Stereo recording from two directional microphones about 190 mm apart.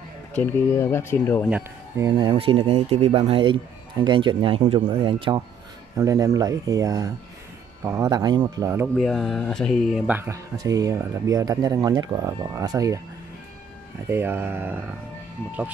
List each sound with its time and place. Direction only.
0.3 s speech: 10° left (ahead or behind)
1.5 s speech: 15° right (ahead or behind)
8.9 s speech: centre (ahead or behind); by 13.0 s 15° right (ahead or behind)
14.0 s speech: 10° right (ahead or behind)